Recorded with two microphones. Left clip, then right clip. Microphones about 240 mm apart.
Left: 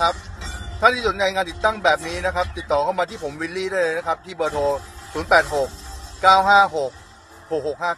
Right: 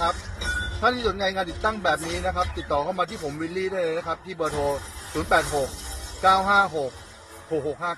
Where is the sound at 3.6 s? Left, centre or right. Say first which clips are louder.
Left 4 dB; left.